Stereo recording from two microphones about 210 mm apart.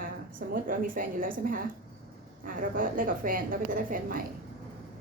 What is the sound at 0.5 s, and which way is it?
A woman's voice, 40° right (ahead or behind).